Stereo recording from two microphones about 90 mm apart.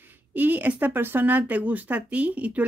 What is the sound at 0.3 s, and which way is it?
Speech, 20° right (ahead or behind).